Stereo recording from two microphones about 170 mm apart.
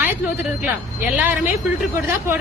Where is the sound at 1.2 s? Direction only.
10° right (ahead or behind).